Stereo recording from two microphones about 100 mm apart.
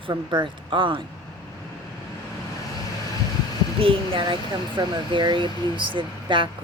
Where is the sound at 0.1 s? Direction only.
50° right (ahead or behind).